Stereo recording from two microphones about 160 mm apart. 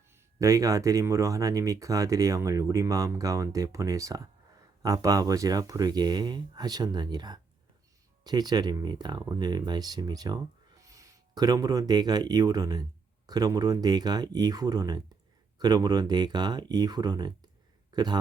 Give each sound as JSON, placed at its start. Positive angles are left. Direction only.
{"t": 0.1, "sound": "speech", "side_deg": -20}